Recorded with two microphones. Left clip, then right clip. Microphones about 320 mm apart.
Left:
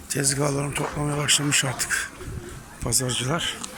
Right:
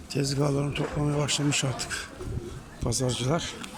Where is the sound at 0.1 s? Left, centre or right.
Centre.